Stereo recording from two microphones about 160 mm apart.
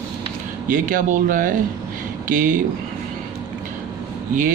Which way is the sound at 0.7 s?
55° right (ahead or behind).